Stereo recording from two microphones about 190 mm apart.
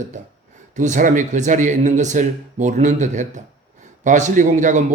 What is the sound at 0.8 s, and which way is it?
Speech, 40° right (ahead or behind).